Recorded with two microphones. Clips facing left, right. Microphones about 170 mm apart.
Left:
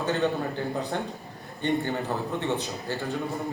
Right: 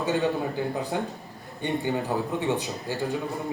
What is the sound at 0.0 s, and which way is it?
A man's voice, 10° right (ahead or behind).